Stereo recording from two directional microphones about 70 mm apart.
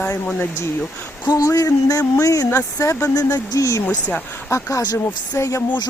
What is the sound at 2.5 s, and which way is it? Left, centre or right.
Speech, left.